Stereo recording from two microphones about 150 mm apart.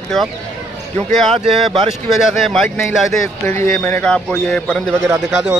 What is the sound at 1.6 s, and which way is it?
Speech, 40° right (ahead or behind).